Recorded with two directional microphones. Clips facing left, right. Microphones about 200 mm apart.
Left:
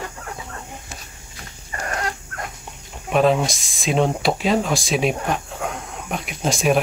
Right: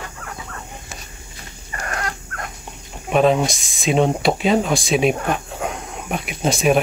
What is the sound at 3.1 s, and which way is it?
Speech, centre (ahead or behind).